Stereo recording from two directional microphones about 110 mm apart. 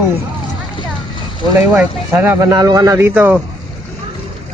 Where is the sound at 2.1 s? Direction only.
20° right (ahead or behind).